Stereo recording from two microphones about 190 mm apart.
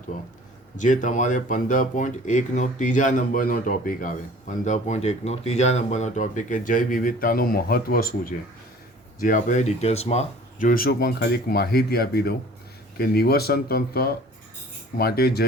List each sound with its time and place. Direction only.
0.8 s speech: 40° left (ahead or behind)